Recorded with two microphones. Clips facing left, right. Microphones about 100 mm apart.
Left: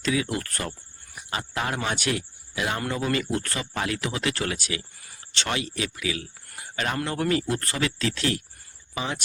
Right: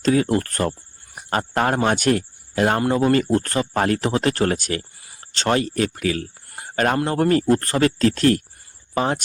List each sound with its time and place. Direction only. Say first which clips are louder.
0.0 s speech: right 8 dB; 45° right (ahead or behind)